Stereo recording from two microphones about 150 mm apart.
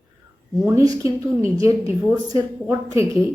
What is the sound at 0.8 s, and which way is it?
Speech, 20° right (ahead or behind).